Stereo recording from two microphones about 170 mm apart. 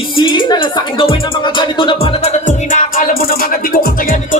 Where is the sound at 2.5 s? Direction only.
50° left (ahead or behind).